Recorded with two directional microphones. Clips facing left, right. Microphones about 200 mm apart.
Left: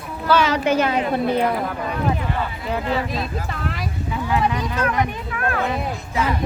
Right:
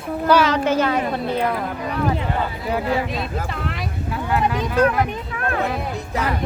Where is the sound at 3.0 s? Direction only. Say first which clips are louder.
Even; centre (ahead or behind).